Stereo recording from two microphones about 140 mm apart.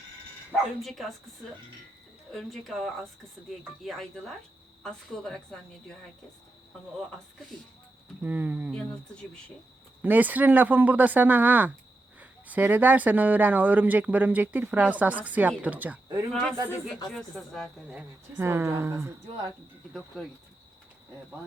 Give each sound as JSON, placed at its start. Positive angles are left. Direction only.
{"t": 0.8, "sound": "a woman's voice", "side_deg": 0}
{"t": 2.3, "sound": "a woman's voice", "side_deg": 0}
{"t": 3.8, "sound": "a woman's voice", "side_deg": 0}
{"t": 8.2, "sound": "speech", "side_deg": -10}
{"t": 8.7, "sound": "speech", "side_deg": 5}
{"t": 10.0, "sound": "speech", "side_deg": -10}
{"t": 16.3, "sound": "a woman's voice", "side_deg": 5}
{"t": 17.8, "sound": "speech", "side_deg": -15}
{"t": 19.9, "sound": "a woman's voice", "side_deg": 0}